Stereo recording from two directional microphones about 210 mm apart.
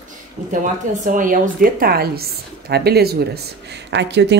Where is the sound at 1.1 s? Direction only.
40° right (ahead or behind).